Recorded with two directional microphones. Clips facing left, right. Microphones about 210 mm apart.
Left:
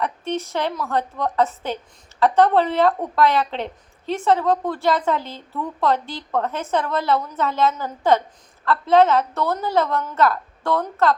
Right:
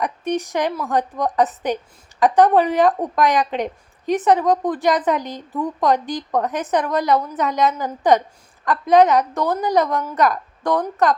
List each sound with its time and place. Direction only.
0.0 s a woman's voice: 15° right (ahead or behind)